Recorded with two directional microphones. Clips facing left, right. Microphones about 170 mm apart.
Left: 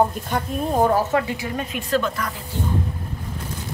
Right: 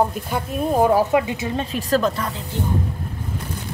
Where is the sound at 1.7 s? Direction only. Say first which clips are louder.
Right 3 dB; 35° right (ahead or behind).